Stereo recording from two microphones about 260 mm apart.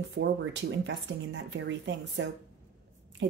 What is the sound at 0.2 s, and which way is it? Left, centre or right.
Speech, right.